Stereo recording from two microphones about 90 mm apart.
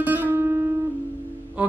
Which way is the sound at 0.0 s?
20° right (ahead or behind).